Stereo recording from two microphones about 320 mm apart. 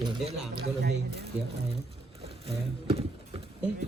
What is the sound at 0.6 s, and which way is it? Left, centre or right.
Speech, right.